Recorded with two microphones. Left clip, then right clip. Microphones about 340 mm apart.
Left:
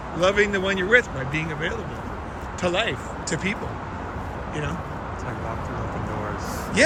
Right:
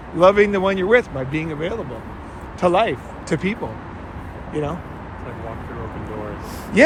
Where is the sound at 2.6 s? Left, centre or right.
Centre.